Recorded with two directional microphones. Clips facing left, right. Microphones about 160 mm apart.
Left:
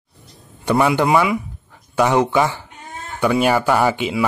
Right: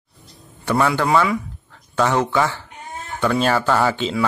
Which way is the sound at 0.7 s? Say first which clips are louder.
Left 2 dB; 15° left (ahead or behind).